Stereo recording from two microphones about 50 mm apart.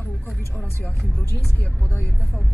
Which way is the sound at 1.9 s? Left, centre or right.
Left.